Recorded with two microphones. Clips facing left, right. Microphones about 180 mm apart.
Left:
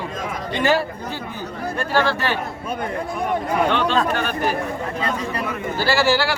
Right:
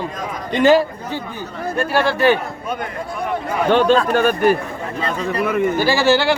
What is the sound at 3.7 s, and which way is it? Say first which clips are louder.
Speech: right 5 dB; 45° right (ahead or behind).